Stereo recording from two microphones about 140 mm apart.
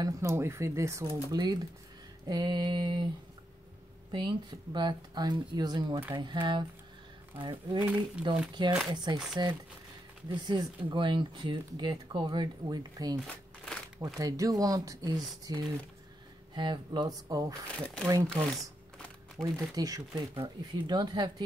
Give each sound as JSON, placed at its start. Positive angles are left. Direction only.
{"t": 0.0, "sound": "speech", "side_deg": -20}
{"t": 4.1, "sound": "speech", "side_deg": -30}
{"t": 7.8, "sound": "speech", "side_deg": -10}
{"t": 8.6, "sound": "speech", "side_deg": -35}
{"t": 10.3, "sound": "speech", "side_deg": -30}
{"t": 17.6, "sound": "speech", "side_deg": 10}
{"t": 18.2, "sound": "crumpling", "side_deg": 5}
{"t": 19.4, "sound": "speech", "side_deg": -25}